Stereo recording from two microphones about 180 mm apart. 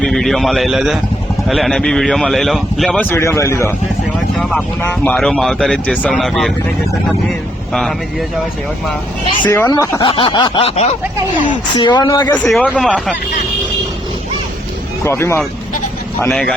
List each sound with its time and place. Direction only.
0.0 s speech: centre (ahead or behind)
7.7 s speech: centre (ahead or behind)
9.4 s speech: 10° left (ahead or behind)
10.1 s a sound: 30° left (ahead or behind)
11.8 s speech: 25° left (ahead or behind)
12.3 s speech: 5° left (ahead or behind)
15.0 s speech: 15° left (ahead or behind)
16.3 s speech: 5° left (ahead or behind)